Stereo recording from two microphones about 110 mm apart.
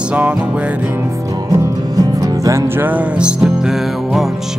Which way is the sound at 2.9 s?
10° right (ahead or behind).